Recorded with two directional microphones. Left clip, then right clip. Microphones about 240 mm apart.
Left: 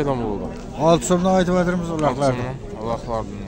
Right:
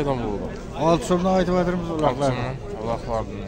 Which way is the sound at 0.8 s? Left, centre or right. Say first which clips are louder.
Left 3 dB; left.